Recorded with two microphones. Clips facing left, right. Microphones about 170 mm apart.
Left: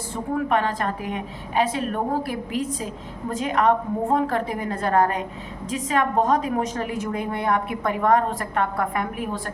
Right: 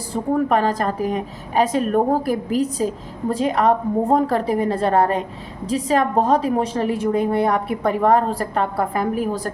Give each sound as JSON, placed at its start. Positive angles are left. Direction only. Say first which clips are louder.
{"t": 0.1, "sound": "a woman's voice", "louder": "right 5 dB", "side_deg": -40}